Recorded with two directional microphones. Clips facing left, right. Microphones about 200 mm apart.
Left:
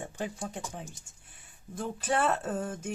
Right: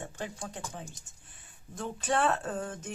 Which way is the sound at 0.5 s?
10° left (ahead or behind).